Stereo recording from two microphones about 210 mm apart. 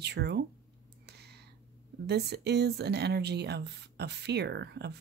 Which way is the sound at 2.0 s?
50° right (ahead or behind).